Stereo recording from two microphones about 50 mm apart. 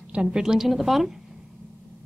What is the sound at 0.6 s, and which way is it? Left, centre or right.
Speech, centre.